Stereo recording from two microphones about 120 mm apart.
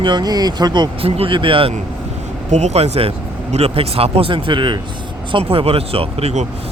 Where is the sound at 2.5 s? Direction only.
70° right (ahead or behind).